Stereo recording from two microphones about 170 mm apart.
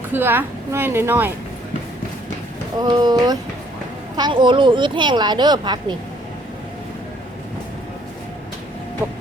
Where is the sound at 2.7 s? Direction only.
25° right (ahead or behind).